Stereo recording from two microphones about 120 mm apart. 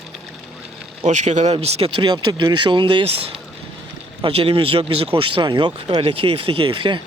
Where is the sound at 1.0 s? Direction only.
75° right (ahead or behind).